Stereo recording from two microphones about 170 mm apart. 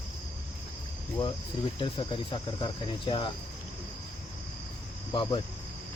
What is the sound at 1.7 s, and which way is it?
Speech, 30° left (ahead or behind).